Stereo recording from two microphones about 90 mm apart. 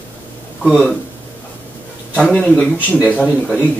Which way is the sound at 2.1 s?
10° left (ahead or behind).